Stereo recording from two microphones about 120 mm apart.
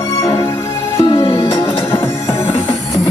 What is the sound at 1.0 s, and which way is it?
Music, 50° left (ahead or behind).